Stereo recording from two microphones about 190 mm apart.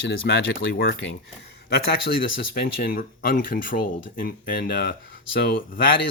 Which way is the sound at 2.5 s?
55° left (ahead or behind).